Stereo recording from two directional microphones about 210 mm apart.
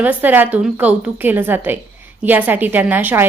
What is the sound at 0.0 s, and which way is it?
A woman's voice, 10° right (ahead or behind).